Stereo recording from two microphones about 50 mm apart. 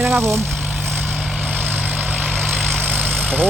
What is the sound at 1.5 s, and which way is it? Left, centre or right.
Vehicle, right.